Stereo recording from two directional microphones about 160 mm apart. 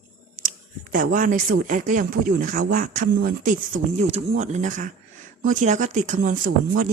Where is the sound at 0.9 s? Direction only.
60° right (ahead or behind).